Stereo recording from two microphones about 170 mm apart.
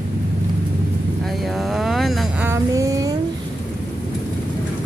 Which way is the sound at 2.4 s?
15° right (ahead or behind).